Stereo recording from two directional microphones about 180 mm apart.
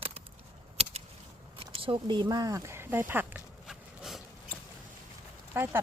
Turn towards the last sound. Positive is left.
turn(degrees=-10)  # may be behind; listen again after turning